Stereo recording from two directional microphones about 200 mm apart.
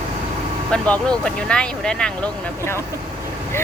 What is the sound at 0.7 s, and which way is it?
Speech, 5° left (ahead or behind).